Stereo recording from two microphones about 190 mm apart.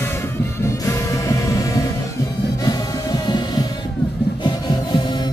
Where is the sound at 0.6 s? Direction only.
15° left (ahead or behind).